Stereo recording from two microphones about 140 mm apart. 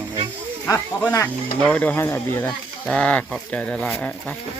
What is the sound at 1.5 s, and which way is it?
Speech, 10° left (ahead or behind).